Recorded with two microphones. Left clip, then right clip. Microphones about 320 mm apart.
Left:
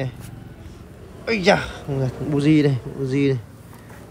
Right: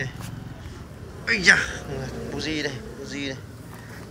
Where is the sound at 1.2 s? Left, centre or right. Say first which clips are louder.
Even; centre.